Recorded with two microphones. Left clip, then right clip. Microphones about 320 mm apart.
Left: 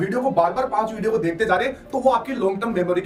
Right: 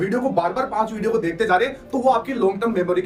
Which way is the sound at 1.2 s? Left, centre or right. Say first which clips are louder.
Right 3 dB; centre.